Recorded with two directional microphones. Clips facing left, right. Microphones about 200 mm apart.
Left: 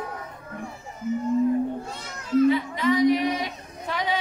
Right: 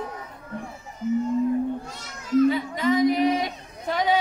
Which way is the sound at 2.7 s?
45° right (ahead or behind).